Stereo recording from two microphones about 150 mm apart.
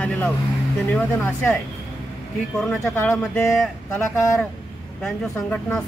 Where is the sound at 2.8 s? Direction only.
15° left (ahead or behind).